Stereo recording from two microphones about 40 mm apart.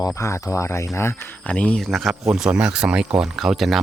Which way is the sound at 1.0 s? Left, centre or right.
Left.